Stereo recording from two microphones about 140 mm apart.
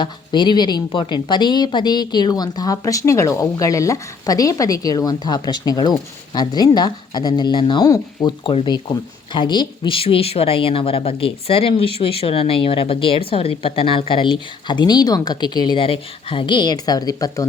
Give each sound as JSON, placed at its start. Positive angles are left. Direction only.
{"t": 0.0, "sound": "speech", "side_deg": 35}